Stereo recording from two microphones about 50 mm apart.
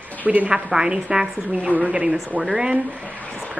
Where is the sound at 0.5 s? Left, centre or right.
Centre.